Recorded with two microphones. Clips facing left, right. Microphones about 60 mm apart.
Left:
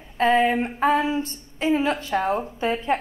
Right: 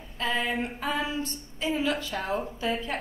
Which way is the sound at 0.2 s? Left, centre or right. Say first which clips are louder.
Left 10 dB; left.